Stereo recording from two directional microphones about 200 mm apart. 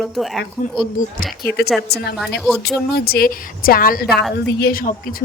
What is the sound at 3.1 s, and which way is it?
A woman's voice, 45° left (ahead or behind).